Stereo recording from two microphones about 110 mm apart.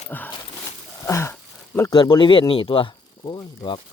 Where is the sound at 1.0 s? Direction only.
25° left (ahead or behind).